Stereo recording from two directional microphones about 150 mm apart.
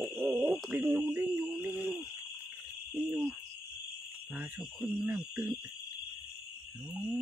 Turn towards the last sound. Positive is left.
turn(degrees=-10)  # may be behind; listen again after turning